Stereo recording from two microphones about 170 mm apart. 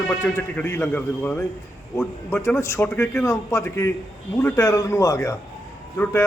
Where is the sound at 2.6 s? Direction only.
15° left (ahead or behind).